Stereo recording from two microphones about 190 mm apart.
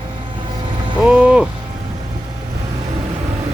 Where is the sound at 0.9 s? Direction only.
5° right (ahead or behind).